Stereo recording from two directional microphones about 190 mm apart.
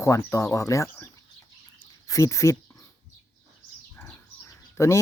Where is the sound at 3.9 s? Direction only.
10° left (ahead or behind).